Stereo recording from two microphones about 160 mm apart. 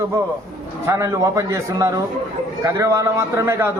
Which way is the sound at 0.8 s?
20° right (ahead or behind).